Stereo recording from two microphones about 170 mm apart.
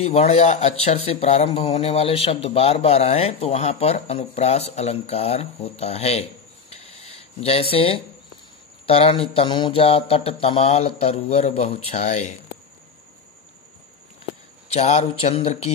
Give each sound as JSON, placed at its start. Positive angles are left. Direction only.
{"t": 0.0, "sound": "speech", "side_deg": 40}
{"t": 6.7, "sound": "a sound", "side_deg": 35}
{"t": 8.8, "sound": "speech", "side_deg": 35}
{"t": 14.7, "sound": "speech", "side_deg": 40}